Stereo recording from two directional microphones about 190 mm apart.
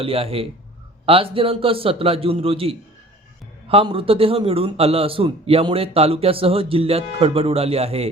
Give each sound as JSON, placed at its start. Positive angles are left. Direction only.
{"t": 0.0, "sound": "a man's voice", "side_deg": -30}